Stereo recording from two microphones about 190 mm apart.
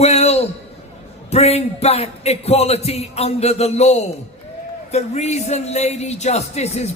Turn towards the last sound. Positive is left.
turn(degrees=35)  # may be behind; listen again after turning